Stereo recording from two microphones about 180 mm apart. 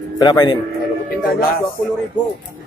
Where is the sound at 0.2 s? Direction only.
25° left (ahead or behind).